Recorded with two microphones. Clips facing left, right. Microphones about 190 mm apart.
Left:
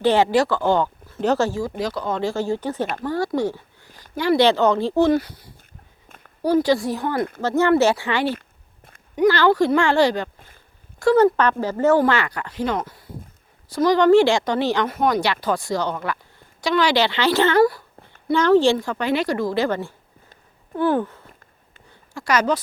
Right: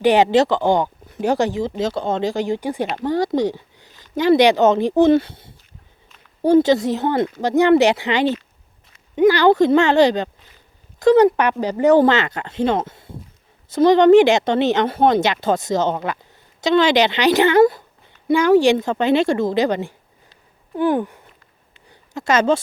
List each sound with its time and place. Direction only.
0.0 s speech: 15° right (ahead or behind)